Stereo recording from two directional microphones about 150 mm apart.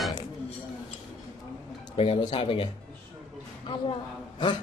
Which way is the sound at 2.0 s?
35° left (ahead or behind).